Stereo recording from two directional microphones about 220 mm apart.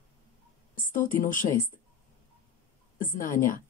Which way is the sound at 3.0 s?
35° left (ahead or behind).